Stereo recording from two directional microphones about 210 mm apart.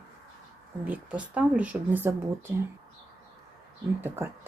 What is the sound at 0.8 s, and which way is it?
Speech, 5° right (ahead or behind).